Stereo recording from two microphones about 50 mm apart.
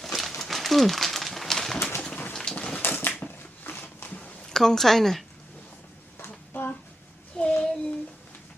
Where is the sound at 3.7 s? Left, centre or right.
Left.